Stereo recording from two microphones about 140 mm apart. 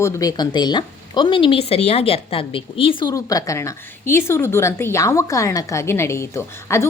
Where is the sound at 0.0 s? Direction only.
25° left (ahead or behind).